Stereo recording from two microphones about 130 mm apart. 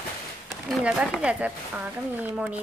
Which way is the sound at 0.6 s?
5° right (ahead or behind).